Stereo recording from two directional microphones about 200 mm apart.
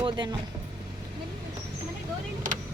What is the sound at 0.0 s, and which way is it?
Speech, 25° right (ahead or behind).